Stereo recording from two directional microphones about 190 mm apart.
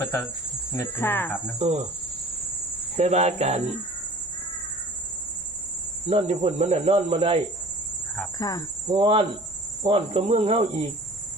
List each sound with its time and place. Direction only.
0.0 s speech: 15° left (ahead or behind)
1.5 s speech: 35° right (ahead or behind)
3.0 s speech: 35° right (ahead or behind)
6.1 s speech: 30° right (ahead or behind)
8.1 s cricket: 15° left (ahead or behind)
8.9 s cricket: 30° right (ahead or behind)
9.8 s speech: 30° right (ahead or behind)